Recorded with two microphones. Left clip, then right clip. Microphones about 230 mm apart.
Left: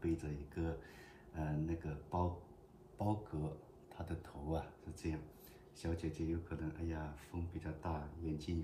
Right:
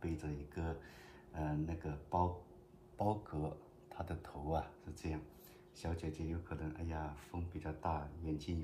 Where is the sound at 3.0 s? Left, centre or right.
Right.